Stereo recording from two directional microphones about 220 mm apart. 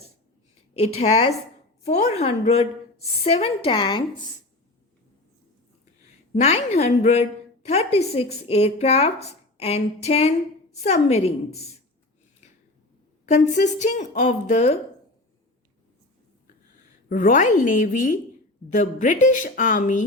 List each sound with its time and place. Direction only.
0.9 s a woman's voice: 30° left (ahead or behind)
6.4 s a woman's voice: 30° left (ahead or behind)
13.2 s a woman's voice: 30° left (ahead or behind)
17.1 s a woman's voice: 35° left (ahead or behind)